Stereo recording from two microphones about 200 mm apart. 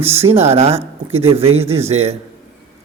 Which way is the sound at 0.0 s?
10° right (ahead or behind).